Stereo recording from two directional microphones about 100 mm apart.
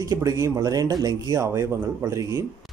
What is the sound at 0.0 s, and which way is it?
Speech, 35° right (ahead or behind).